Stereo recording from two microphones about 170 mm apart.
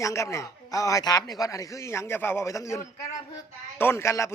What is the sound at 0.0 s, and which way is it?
A man's voice, 20° left (ahead or behind).